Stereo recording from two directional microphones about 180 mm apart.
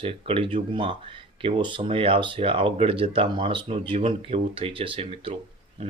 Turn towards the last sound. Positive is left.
turn(degrees=-30)  # may be behind; listen again after turning